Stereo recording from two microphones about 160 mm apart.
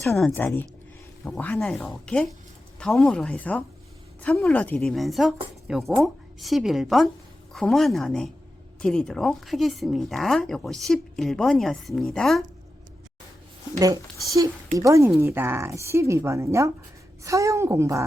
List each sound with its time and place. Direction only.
0.3 s speech: 10° left (ahead or behind)
13.7 s a woman's voice: 20° right (ahead or behind)